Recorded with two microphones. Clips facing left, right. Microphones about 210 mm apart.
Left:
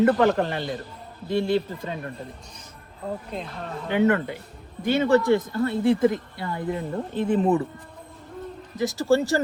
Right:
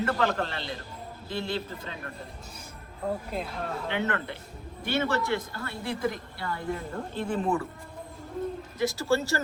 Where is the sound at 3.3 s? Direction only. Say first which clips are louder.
Even; 5° right (ahead or behind).